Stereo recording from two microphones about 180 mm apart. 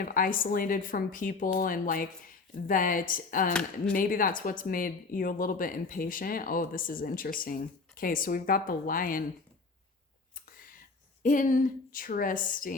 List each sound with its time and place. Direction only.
0.0 s speech: 50° left (ahead or behind)
3.5 s speech: 5° left (ahead or behind)
3.9 s speech: 50° left (ahead or behind)
11.2 s speech: 45° left (ahead or behind)